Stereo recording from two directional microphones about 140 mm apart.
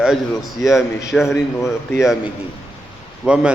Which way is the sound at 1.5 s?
20° left (ahead or behind).